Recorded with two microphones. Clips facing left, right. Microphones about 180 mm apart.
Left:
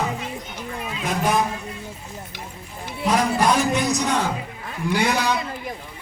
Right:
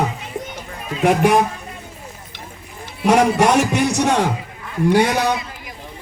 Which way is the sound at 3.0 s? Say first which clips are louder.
Right 5 dB; 70° right (ahead or behind).